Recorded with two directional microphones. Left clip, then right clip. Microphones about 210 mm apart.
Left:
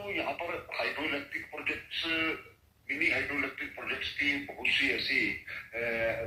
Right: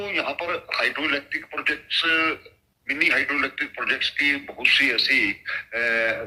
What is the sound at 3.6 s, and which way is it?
A man's voice, 40° right (ahead or behind).